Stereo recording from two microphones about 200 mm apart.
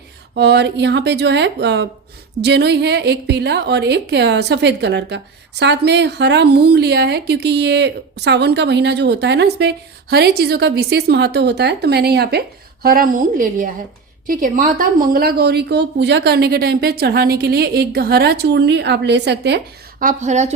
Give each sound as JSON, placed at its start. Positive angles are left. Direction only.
{"t": 0.3, "sound": "a woman's voice", "side_deg": -60}